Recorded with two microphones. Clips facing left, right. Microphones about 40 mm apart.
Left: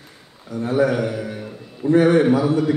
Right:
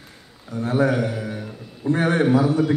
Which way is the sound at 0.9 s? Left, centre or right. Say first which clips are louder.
Left 1 dB; centre.